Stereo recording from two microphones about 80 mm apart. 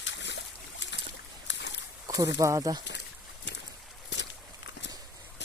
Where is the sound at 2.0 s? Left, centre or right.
Right.